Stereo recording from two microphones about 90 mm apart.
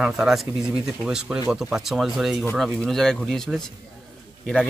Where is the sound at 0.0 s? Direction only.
5° right (ahead or behind).